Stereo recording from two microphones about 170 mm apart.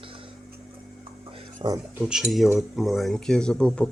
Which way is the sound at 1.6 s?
25° right (ahead or behind).